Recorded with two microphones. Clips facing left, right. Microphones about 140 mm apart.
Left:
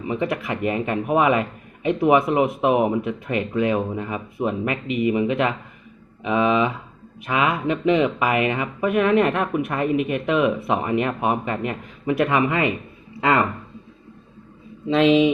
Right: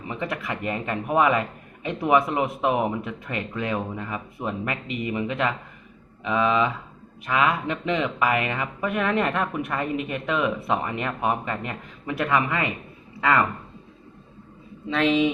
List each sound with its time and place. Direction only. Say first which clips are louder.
0.0 s speech: left 6 dB; 15° left (ahead or behind)
14.8 s speech: left 5 dB; 25° left (ahead or behind)